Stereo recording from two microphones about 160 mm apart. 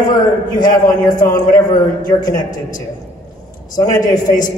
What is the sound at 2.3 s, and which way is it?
Speech, 50° left (ahead or behind).